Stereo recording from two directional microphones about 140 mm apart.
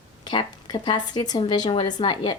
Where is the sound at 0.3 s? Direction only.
35° left (ahead or behind).